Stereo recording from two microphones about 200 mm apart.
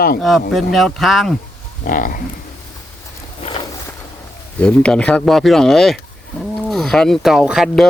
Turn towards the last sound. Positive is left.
turn(degrees=0)  # may be behind; listen again after turning